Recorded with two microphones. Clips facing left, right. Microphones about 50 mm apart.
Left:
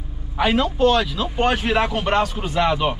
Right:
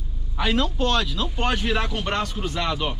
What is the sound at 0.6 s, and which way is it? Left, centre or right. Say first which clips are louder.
Speech: left 6 dB; centre.